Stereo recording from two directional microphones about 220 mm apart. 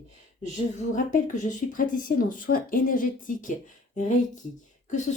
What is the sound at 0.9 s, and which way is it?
Speech, 35° left (ahead or behind).